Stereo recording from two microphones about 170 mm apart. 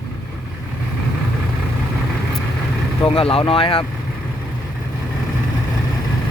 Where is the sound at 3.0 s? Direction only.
35° left (ahead or behind).